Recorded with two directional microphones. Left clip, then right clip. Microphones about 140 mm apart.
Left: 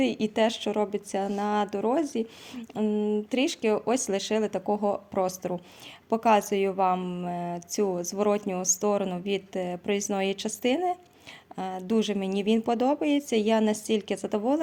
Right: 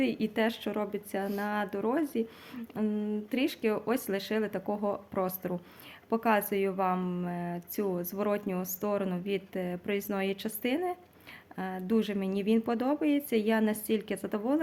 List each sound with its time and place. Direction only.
0.0 s a woman's voice: 40° left (ahead or behind)